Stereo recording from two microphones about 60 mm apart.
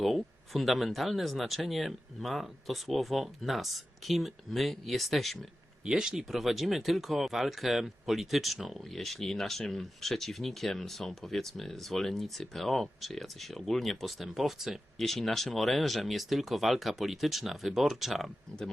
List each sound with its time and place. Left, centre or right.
0.0 s speech: centre
5.8 s speech: centre